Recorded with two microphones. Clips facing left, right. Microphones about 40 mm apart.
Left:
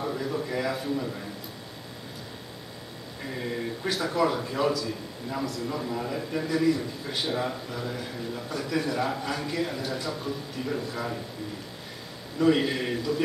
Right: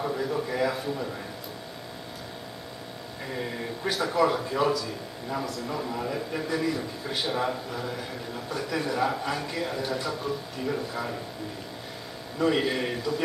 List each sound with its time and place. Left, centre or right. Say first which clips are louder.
0.0 s a man's voice: right 1 dB; centre
3.3 s a man's voice: left 1 dB; centre
12.4 s a man's voice: left 2 dB; centre